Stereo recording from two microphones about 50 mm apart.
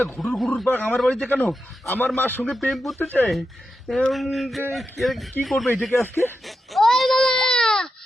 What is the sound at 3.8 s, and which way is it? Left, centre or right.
Speech, centre.